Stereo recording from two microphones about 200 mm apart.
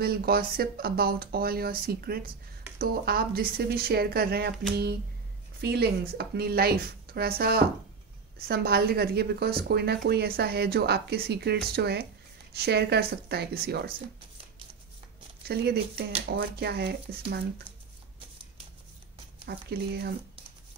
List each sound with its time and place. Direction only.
0.0 s speech: 50° right (ahead or behind)
5.6 s speech: 55° right (ahead or behind)
15.4 s speech: 55° right (ahead or behind)
19.4 s speech: 55° right (ahead or behind)